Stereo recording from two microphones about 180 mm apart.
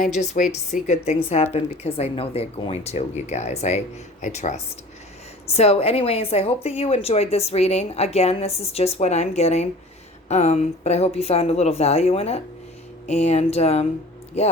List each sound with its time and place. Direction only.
0.0 s a woman's voice: 40° left (ahead or behind)